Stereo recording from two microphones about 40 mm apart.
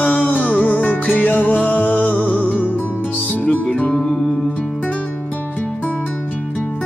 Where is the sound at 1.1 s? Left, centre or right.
Left.